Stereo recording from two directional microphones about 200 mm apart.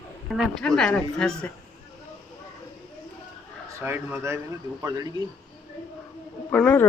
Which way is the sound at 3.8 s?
10° right (ahead or behind).